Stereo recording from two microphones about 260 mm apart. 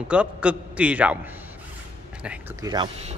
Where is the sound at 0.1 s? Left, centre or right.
Centre.